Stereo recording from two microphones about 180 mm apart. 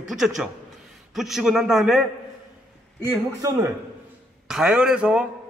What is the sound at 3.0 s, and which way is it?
Speech, 15° right (ahead or behind).